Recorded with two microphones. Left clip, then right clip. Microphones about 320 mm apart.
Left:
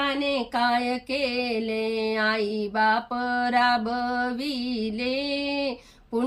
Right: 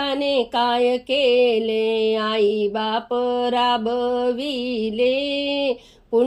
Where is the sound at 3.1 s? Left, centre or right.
Centre.